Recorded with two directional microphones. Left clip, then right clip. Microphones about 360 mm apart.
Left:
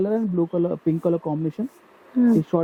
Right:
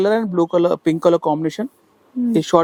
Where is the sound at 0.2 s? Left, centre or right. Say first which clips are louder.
Right 7 dB; centre.